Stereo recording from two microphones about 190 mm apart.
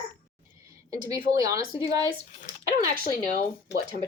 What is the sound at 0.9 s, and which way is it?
Speech, 20° right (ahead or behind).